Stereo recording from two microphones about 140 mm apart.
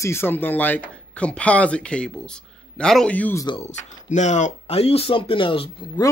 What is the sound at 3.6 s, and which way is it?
Speech, 55° left (ahead or behind).